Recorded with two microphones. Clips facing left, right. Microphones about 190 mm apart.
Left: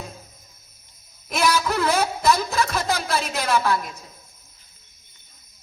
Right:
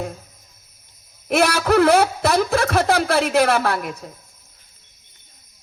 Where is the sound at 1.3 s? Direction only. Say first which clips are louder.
Right 5 dB; 70° right (ahead or behind).